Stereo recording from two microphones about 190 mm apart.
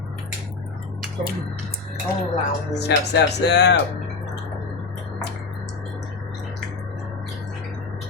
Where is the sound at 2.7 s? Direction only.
60° left (ahead or behind).